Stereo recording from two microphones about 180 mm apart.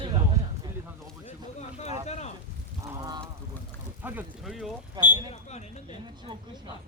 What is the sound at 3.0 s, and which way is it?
Honk, 20° right (ahead or behind).